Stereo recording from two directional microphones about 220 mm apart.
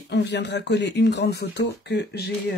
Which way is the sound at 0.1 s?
50° left (ahead or behind).